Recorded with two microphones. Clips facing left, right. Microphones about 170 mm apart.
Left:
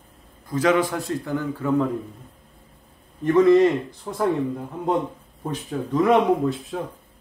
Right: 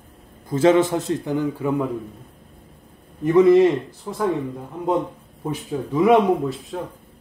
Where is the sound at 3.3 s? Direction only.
10° right (ahead or behind).